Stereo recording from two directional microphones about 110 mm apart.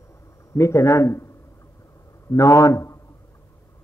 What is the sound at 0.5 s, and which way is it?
A man's voice, 25° left (ahead or behind).